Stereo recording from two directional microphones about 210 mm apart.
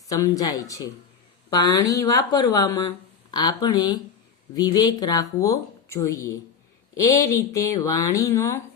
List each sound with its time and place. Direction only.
0.1 s speech: 15° left (ahead or behind)